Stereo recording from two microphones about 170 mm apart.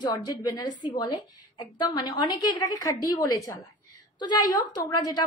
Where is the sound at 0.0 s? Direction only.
25° left (ahead or behind).